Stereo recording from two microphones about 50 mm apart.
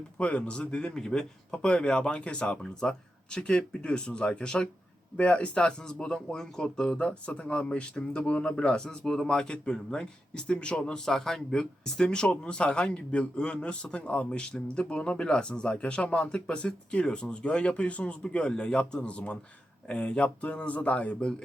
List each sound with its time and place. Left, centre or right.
0.2 s speech: left
21.2 s speech: centre